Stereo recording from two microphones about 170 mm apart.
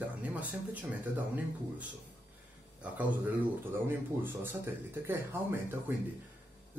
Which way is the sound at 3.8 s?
10° right (ahead or behind).